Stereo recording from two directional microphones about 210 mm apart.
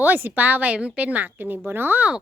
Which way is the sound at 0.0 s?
10° right (ahead or behind).